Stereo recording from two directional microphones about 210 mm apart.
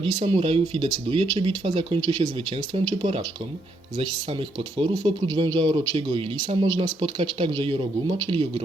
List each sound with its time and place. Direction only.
0.0 s speech: 25° right (ahead or behind)